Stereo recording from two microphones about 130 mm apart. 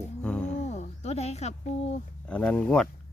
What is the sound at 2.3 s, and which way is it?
Speech, 10° left (ahead or behind).